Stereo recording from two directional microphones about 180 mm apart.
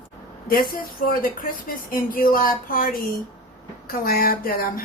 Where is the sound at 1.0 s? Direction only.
55° left (ahead or behind).